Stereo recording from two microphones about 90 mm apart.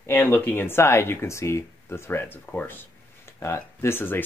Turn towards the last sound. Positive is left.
turn(degrees=25)  # may be behind; listen again after turning